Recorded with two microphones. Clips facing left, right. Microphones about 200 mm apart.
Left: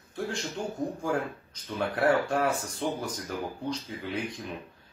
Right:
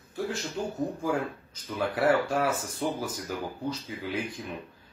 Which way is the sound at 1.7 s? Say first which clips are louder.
Right 1 dB; 5° right (ahead or behind).